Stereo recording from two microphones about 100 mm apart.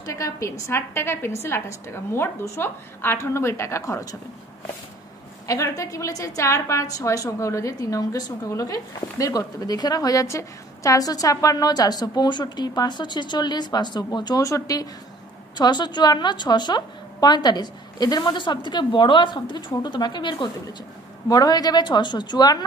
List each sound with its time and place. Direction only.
0.0 s a woman's voice: 35° left (ahead or behind)
5.5 s a woman's voice: 35° left (ahead or behind)
15.5 s a woman's voice: 45° left (ahead or behind)